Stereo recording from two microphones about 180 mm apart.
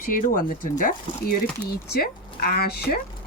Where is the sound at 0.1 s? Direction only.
50° left (ahead or behind).